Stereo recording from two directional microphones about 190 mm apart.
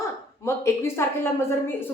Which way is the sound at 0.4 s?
15° left (ahead or behind).